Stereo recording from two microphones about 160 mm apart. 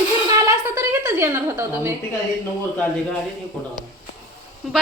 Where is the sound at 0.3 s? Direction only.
20° right (ahead or behind).